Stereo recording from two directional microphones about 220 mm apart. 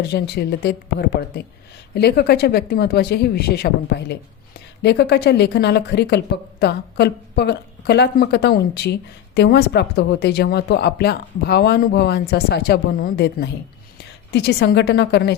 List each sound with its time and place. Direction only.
0.1 s a woman's voice: 45° left (ahead or behind)